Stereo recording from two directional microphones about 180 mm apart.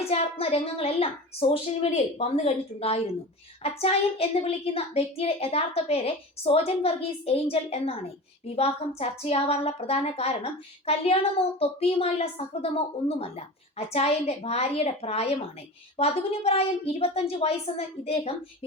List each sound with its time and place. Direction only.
0.1 s a woman's voice: 35° left (ahead or behind)